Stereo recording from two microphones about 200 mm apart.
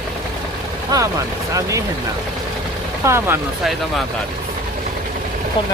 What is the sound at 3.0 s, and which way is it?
Speech, 10° right (ahead or behind).